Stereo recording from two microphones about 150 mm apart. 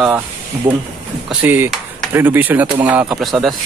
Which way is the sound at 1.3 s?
10° right (ahead or behind).